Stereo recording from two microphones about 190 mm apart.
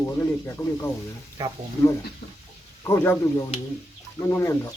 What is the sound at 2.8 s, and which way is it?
Speech, 15° left (ahead or behind).